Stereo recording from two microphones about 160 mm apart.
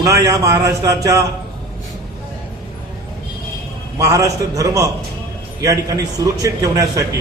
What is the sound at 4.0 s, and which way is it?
A man's voice, 20° right (ahead or behind).